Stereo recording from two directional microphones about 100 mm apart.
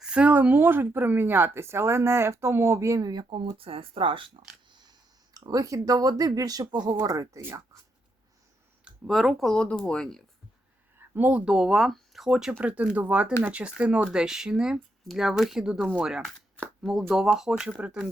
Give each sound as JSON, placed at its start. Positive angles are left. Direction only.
{"t": 0.0, "sound": "speech", "side_deg": -10}
{"t": 3.2, "sound": "speech", "side_deg": -75}
{"t": 4.7, "sound": "speech", "side_deg": -45}
{"t": 8.8, "sound": "speech", "side_deg": 0}
{"t": 10.9, "sound": "speech", "side_deg": -20}